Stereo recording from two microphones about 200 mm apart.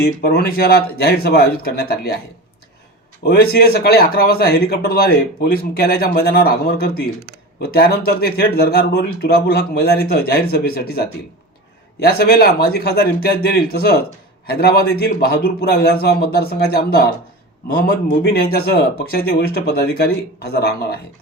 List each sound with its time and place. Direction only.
0.0 s speech: 50° left (ahead or behind)
3.2 s speech: 50° left (ahead or behind)